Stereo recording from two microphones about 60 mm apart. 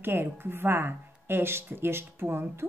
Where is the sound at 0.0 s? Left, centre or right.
Right.